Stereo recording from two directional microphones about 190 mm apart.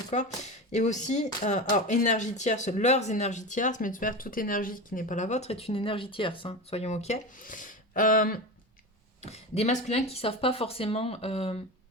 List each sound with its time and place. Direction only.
0.1 s speech: 40° left (ahead or behind)
9.2 s speech: 35° left (ahead or behind)